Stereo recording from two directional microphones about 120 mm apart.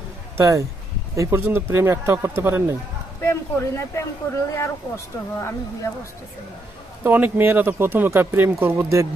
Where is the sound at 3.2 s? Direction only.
25° left (ahead or behind).